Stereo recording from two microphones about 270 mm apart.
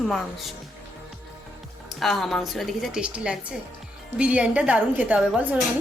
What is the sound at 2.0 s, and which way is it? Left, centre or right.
A woman's voice, centre.